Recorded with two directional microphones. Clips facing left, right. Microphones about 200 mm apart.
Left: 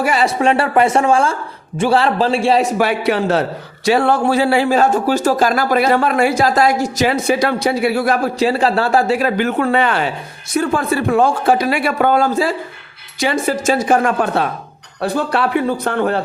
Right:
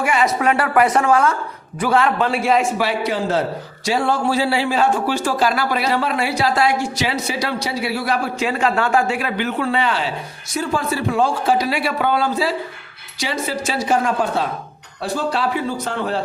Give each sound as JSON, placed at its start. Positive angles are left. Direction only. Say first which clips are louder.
{"t": 0.0, "sound": "a man's voice", "louder": "left 3 dB", "side_deg": 35}
{"t": 2.8, "sound": "a man's voice", "louder": "left 4 dB", "side_deg": 65}